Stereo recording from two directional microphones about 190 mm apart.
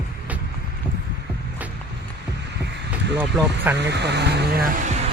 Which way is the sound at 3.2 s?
10° right (ahead or behind).